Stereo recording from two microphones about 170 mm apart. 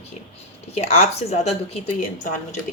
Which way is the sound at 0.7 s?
40° left (ahead or behind).